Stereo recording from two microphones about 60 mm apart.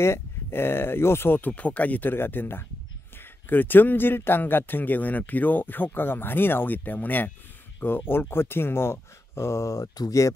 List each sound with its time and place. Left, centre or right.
0.0 s a man's voice: left
1.5 s a man's voice: left